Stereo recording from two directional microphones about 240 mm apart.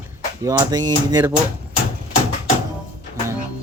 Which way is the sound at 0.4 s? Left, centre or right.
Centre.